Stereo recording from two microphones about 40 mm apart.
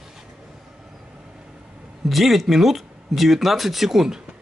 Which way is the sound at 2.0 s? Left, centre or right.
Centre.